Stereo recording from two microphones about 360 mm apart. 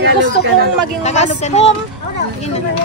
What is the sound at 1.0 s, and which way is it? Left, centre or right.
Speech, centre.